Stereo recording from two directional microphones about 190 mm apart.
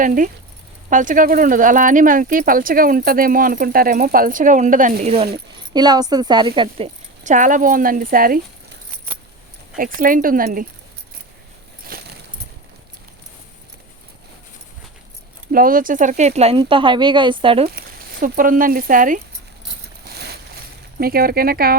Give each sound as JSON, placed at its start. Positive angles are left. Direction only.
{"t": 0.0, "sound": "speech", "side_deg": -45}
{"t": 5.7, "sound": "a woman's voice", "side_deg": -20}
{"t": 11.9, "sound": "a sound", "side_deg": -55}
{"t": 15.5, "sound": "a woman's voice", "side_deg": -45}
{"t": 17.7, "sound": "speech", "side_deg": -50}
{"t": 20.1, "sound": "a sound", "side_deg": -55}
{"t": 21.0, "sound": "speech", "side_deg": -50}